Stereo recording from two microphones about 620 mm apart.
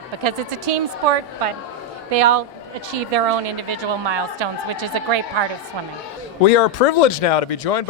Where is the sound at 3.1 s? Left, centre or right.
Right.